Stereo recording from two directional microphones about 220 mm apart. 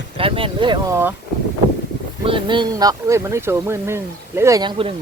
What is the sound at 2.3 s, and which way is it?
Speech, 20° right (ahead or behind).